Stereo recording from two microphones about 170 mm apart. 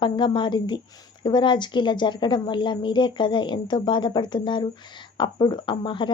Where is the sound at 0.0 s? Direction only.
30° left (ahead or behind).